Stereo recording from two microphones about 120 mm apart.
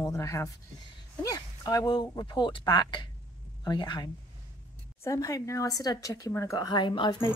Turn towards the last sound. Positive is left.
turn(degrees=40)  # may be behind; listen again after turning